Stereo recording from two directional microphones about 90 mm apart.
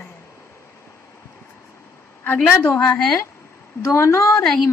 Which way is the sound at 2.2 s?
20° left (ahead or behind).